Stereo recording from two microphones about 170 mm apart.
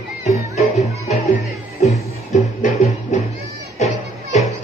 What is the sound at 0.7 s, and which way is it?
Music, 40° left (ahead or behind).